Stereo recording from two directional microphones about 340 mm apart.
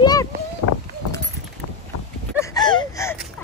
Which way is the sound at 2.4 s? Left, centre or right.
Centre.